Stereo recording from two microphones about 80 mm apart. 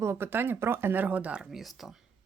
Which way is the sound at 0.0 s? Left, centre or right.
Right.